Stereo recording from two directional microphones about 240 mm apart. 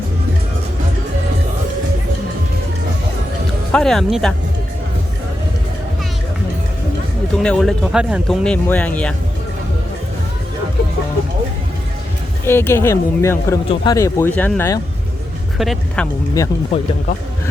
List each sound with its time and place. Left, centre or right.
3.7 s speech: centre
7.3 s speech: centre
12.5 s speech: centre
16.4 s speech: centre